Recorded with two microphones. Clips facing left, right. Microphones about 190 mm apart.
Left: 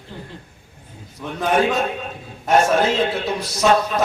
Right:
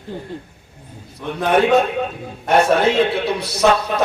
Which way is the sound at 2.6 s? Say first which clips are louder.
Right 6 dB; 60° right (ahead or behind).